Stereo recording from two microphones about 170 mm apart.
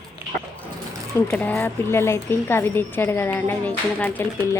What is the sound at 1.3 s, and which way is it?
A woman's voice, 15° left (ahead or behind).